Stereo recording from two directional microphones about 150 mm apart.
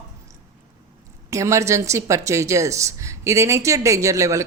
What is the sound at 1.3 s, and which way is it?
Speech, 20° right (ahead or behind).